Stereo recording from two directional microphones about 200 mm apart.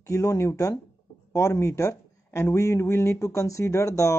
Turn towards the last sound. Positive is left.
turn(degrees=15)  # may be behind; listen again after turning